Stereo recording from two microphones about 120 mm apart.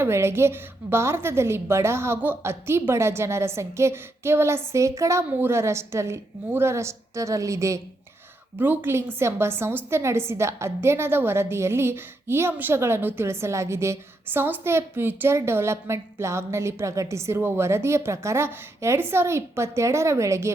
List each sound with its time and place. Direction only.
0.0 s a woman's voice: 20° right (ahead or behind)
8.5 s a woman's voice: 15° right (ahead or behind)